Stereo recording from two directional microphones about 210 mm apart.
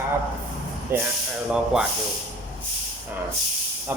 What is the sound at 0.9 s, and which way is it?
Speech, 10° right (ahead or behind).